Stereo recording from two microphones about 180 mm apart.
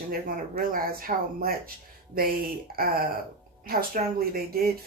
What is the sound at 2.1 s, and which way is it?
Speech, 55° right (ahead or behind).